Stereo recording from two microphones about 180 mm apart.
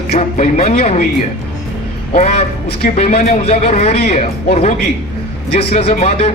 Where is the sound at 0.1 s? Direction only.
35° left (ahead or behind).